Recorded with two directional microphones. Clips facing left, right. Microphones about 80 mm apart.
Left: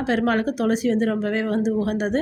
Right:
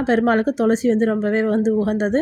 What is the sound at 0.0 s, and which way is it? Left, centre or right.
A woman's voice, right.